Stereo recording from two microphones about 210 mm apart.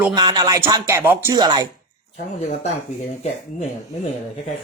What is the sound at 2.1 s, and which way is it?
Speech, 35° left (ahead or behind).